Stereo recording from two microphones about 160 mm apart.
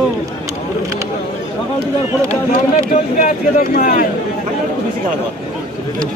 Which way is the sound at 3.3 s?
60° left (ahead or behind).